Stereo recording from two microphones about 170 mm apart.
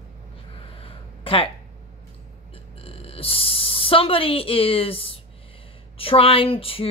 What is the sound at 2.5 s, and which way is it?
Speech, 35° left (ahead or behind).